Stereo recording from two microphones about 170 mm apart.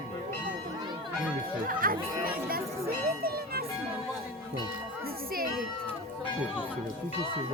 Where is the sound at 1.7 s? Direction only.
55° right (ahead or behind).